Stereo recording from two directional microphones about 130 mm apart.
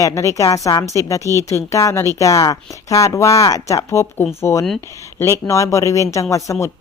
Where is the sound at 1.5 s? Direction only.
25° left (ahead or behind).